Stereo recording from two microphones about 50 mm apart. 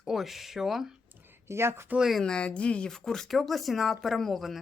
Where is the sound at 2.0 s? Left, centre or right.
Centre.